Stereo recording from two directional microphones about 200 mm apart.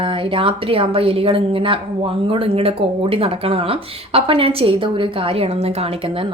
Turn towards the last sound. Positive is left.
turn(degrees=-25)  # may be behind; listen again after turning